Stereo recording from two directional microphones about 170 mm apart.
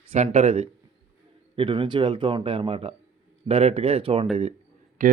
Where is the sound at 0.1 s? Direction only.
40° right (ahead or behind).